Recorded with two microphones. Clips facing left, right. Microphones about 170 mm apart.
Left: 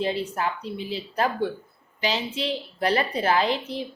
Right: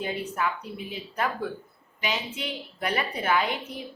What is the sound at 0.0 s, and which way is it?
A woman's voice, 30° left (ahead or behind).